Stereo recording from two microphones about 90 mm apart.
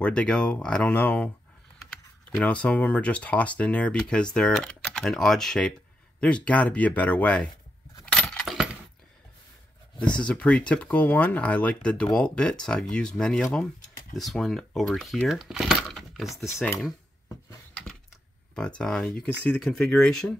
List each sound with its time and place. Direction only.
0.0 s speech: 10° left (ahead or behind)
8.0 s coin: 10° left (ahead or behind)
10.1 s speech: 10° left (ahead or behind)
15.2 s a sound: 5° right (ahead or behind)
18.5 s speech: 10° left (ahead or behind)